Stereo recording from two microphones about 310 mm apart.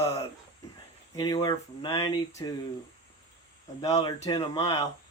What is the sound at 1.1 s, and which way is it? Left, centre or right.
Speech, centre.